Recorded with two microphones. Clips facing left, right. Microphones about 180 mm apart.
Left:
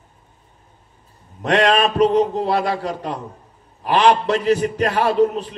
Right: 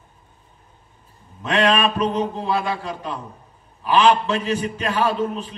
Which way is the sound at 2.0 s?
35° left (ahead or behind).